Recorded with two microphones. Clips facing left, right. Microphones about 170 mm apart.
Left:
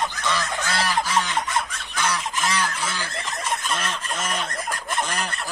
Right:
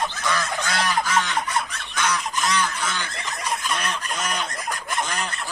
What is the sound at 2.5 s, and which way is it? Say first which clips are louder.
Goose: right 1 dB; 30° left (ahead or behind).